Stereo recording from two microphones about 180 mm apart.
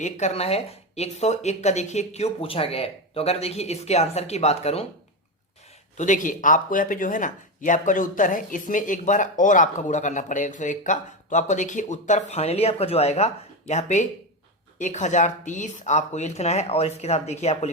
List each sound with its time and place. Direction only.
0.0 s speech: 40° left (ahead or behind)
6.0 s speech: 45° left (ahead or behind)